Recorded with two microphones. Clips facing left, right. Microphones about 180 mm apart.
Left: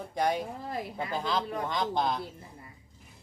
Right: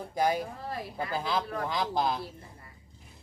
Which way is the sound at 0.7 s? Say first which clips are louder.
Left 1 dB; 20° left (ahead or behind).